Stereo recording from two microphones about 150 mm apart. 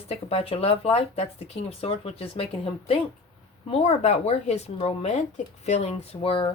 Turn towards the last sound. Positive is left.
turn(degrees=40)  # may be behind; listen again after turning